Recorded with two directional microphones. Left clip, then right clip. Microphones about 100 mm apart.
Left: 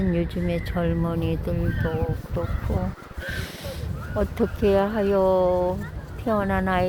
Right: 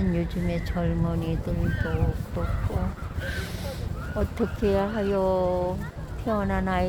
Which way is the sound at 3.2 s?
25° left (ahead or behind).